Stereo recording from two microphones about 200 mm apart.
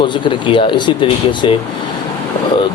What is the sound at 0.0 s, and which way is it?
Speech, 25° left (ahead or behind).